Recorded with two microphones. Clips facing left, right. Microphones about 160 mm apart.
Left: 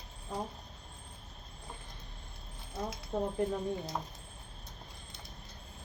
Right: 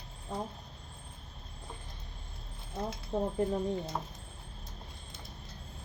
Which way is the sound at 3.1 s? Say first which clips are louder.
Right 1 dB; 20° right (ahead or behind).